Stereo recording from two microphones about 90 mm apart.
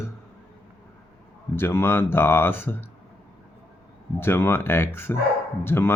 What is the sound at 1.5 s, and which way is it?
Speech, 25° left (ahead or behind).